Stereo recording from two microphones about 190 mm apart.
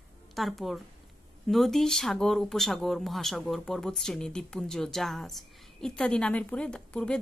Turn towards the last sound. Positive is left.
turn(degrees=5)  # may be behind; listen again after turning